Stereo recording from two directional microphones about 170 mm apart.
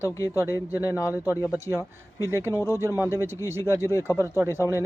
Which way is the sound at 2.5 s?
20° left (ahead or behind).